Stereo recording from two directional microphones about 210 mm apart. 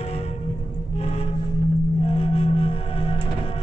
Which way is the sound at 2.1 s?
25° left (ahead or behind).